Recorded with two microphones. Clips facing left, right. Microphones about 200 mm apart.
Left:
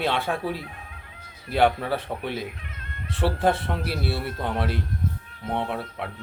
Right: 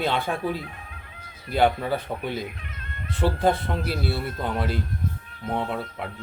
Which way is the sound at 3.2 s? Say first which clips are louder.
Right 1 dB; 5° left (ahead or behind).